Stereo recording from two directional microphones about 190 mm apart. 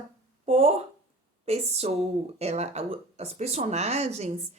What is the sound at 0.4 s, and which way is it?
Speech, 30° right (ahead or behind).